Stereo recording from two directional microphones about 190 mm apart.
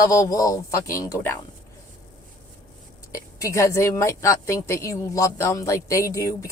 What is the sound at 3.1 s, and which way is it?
A woman's voice, 15° left (ahead or behind).